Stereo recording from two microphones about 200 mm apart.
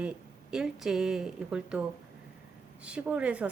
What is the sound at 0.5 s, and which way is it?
A woman's voice, centre (ahead or behind).